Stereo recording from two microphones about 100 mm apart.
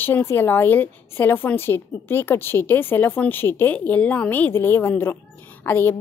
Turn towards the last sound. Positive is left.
turn(degrees=20)  # may be behind; listen again after turning